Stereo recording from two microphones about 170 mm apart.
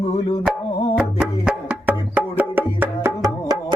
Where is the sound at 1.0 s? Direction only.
5° right (ahead or behind).